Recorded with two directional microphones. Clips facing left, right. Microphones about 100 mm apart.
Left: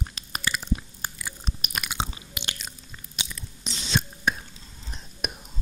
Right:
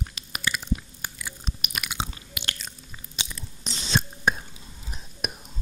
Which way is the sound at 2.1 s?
20° left (ahead or behind).